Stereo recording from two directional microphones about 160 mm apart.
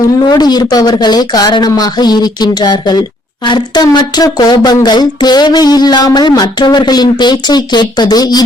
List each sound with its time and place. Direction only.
0.0 s speech: 25° left (ahead or behind)